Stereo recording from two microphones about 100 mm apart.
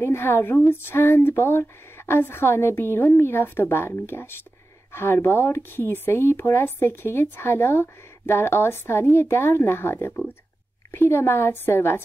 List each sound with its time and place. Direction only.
0.0 s speech: 25° left (ahead or behind)